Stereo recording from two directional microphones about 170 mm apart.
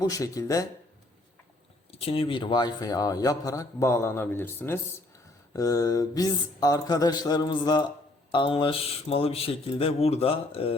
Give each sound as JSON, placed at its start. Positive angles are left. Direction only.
{"t": 0.0, "sound": "a man's voice", "side_deg": 20}
{"t": 1.9, "sound": "a man's voice", "side_deg": 35}